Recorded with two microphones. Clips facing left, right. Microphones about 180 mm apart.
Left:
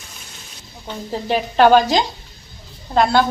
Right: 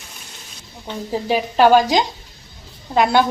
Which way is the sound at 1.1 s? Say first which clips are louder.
Even; 5° right (ahead or behind).